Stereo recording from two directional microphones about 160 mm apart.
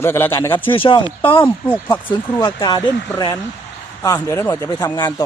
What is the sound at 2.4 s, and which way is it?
Speech, 25° left (ahead or behind).